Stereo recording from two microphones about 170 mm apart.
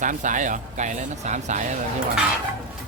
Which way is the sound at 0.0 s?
50° right (ahead or behind).